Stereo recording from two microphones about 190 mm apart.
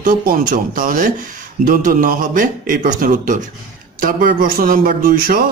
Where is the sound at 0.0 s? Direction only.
45° right (ahead or behind).